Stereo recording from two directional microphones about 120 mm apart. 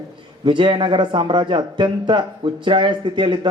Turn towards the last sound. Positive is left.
turn(degrees=-40)  # may be behind; listen again after turning